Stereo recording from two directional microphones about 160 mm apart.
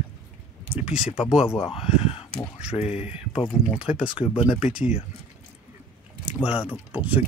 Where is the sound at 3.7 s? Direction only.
5° right (ahead or behind).